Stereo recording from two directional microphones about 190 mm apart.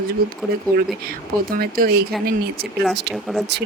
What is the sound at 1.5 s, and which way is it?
Speech, 50° right (ahead or behind).